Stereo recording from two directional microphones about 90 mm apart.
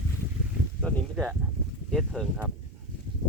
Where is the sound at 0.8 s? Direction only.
10° left (ahead or behind).